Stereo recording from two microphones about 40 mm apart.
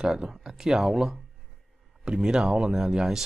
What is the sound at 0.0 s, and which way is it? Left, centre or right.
Speech, centre.